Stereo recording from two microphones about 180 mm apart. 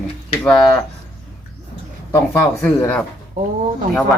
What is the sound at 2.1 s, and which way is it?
Speech, 15° left (ahead or behind).